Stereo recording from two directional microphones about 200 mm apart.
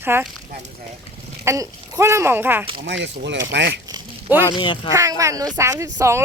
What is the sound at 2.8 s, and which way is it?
Speech, 65° right (ahead or behind).